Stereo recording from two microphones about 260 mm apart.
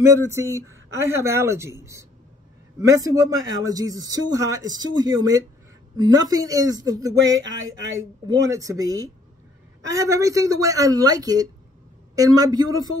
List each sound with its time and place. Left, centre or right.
0.0 s speech: centre
7.3 s speech: right
8.3 s speech: centre